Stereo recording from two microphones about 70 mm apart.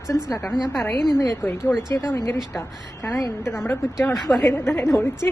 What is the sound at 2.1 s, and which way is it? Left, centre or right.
A woman's voice, left.